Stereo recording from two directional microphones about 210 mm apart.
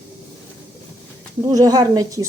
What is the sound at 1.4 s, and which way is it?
Speech, 15° right (ahead or behind).